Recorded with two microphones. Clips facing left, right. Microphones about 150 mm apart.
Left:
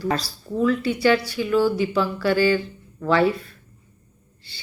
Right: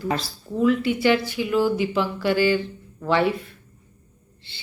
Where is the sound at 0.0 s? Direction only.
20° right (ahead or behind).